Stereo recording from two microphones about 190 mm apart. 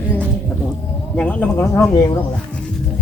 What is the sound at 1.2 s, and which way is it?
Speech, 10° left (ahead or behind).